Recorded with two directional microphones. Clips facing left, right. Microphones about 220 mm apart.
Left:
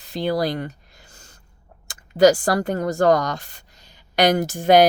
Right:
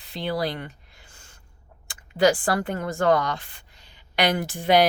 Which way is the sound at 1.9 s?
40° left (ahead or behind).